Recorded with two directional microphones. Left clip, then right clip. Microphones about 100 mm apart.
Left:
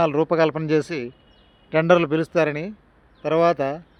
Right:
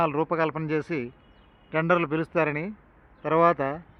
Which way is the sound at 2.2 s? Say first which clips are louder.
Left 4 dB; 40° left (ahead or behind).